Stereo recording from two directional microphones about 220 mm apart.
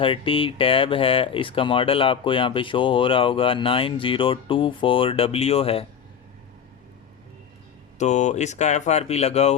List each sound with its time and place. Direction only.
0.0 s speech: 25° left (ahead or behind)
7.9 s speech: 30° left (ahead or behind)